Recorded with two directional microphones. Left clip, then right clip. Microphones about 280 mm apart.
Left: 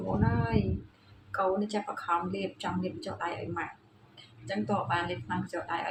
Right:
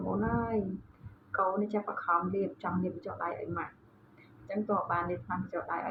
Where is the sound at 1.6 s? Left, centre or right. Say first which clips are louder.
Right 1 dB; centre.